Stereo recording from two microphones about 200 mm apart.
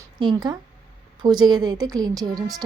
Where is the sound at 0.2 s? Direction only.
20° right (ahead or behind).